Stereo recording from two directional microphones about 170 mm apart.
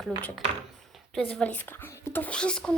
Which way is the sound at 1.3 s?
5° left (ahead or behind).